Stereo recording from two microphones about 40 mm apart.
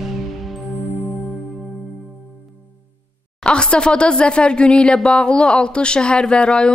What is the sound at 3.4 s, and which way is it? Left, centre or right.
Speech, left.